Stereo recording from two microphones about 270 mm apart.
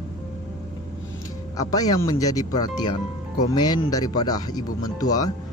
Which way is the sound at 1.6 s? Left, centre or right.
Centre.